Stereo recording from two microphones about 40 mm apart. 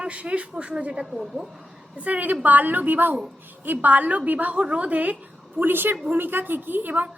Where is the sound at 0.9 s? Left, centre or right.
Centre.